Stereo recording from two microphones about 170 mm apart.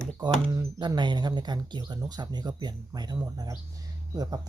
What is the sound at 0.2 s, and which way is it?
Speech, 20° right (ahead or behind).